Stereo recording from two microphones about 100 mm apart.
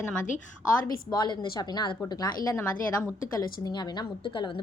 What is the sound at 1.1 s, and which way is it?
A woman's voice, 50° left (ahead or behind).